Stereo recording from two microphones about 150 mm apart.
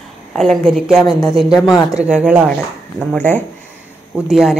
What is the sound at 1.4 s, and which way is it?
Speech, centre (ahead or behind).